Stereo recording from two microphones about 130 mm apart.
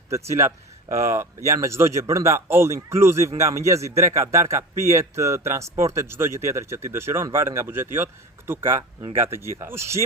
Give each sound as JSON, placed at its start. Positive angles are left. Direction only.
{"t": 0.3, "sound": "speech", "side_deg": -20}